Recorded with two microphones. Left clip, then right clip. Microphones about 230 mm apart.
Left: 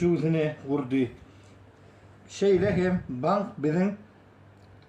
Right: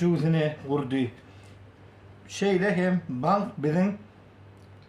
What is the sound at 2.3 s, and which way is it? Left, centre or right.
Speech, right.